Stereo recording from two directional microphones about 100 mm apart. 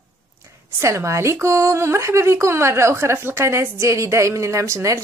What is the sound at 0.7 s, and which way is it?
A woman's voice, 30° right (ahead or behind).